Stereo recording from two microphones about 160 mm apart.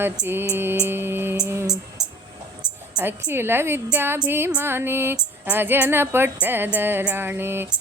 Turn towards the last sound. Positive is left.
turn(degrees=-15)  # may be behind; listen again after turning